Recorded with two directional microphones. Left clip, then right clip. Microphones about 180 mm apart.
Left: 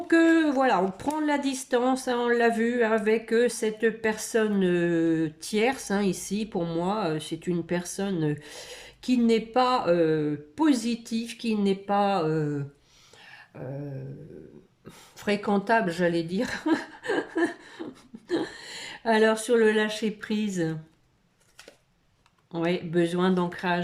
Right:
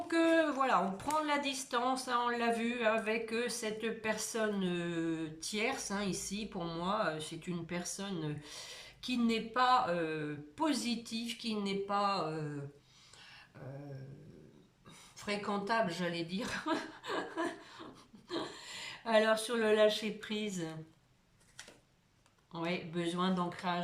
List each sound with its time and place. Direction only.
0.1 s speech: 40° left (ahead or behind)
13.5 s speech: 50° left (ahead or behind)
15.2 s speech: 50° left (ahead or behind)
22.5 s speech: 45° left (ahead or behind)